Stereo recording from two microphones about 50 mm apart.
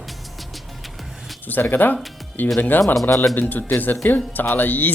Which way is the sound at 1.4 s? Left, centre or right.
Left.